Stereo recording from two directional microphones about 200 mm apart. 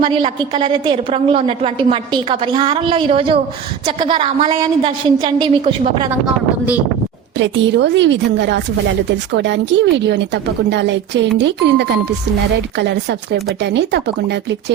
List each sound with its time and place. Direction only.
0.0 s a woman's voice: 25° right (ahead or behind)
7.3 s a woman's voice: 65° right (ahead or behind)